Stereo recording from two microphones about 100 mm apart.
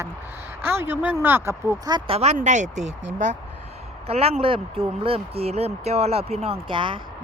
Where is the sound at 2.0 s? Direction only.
70° right (ahead or behind).